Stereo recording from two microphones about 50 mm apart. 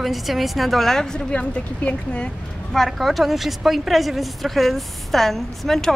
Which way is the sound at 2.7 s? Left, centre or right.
Centre.